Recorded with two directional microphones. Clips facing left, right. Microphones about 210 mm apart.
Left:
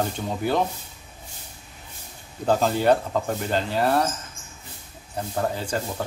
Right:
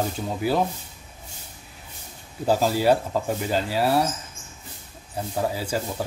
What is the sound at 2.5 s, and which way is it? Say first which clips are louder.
Speech: even; 5° right (ahead or behind).